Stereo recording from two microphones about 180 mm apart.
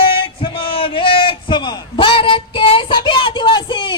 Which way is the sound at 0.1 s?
30° left (ahead or behind).